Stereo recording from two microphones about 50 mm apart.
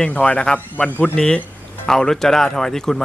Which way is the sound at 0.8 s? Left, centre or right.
Left.